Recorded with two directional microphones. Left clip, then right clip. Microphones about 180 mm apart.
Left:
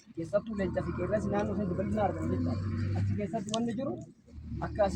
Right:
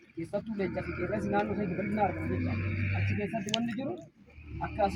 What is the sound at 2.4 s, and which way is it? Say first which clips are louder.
Speech: right 1 dB; 45° right (ahead or behind).